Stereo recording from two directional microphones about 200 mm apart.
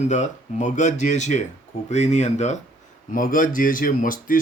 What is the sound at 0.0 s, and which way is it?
Speech, 35° left (ahead or behind).